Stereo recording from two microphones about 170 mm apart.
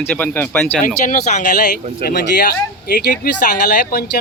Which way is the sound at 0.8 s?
50° left (ahead or behind).